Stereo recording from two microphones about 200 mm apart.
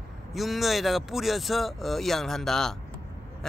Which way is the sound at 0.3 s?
Centre (ahead or behind).